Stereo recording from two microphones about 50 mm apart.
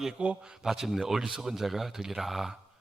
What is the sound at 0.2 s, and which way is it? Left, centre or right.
Speech, right.